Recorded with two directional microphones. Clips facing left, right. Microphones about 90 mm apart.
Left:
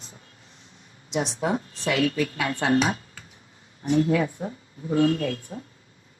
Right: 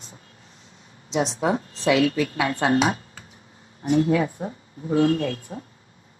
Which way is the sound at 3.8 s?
30° right (ahead or behind).